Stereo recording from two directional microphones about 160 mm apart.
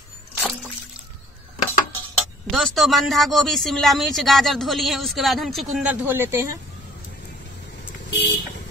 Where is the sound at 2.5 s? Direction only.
Centre (ahead or behind).